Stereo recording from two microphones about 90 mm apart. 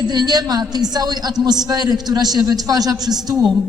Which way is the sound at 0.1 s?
50° right (ahead or behind).